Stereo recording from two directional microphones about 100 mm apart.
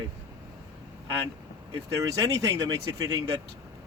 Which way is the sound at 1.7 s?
35° right (ahead or behind).